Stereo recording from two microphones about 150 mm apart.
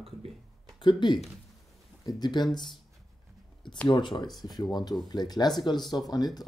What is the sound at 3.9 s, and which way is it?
Speech, 30° left (ahead or behind).